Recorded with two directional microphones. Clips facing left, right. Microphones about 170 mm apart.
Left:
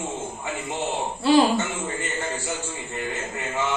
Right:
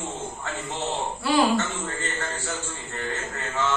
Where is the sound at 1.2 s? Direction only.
25° left (ahead or behind).